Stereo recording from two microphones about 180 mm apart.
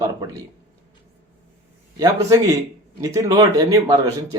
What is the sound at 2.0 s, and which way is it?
A man's voice, 20° right (ahead or behind).